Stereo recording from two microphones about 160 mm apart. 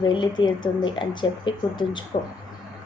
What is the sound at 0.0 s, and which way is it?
A woman's voice, 30° left (ahead or behind).